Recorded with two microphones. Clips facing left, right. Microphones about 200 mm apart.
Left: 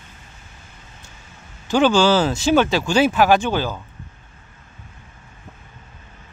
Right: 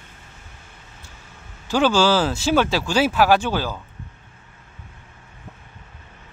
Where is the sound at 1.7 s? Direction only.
5° right (ahead or behind).